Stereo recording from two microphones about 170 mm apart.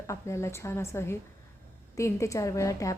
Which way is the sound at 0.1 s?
15° left (ahead or behind).